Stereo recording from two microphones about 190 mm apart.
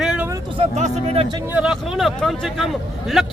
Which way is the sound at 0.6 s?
35° right (ahead or behind).